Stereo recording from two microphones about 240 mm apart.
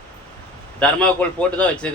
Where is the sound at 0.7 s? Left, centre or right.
Centre.